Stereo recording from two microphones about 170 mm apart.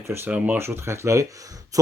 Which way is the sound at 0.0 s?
15° right (ahead or behind).